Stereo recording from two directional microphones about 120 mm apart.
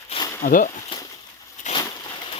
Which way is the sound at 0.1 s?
55° left (ahead or behind).